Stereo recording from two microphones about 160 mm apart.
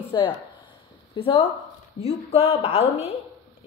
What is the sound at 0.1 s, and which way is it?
A woman's voice, 25° left (ahead or behind).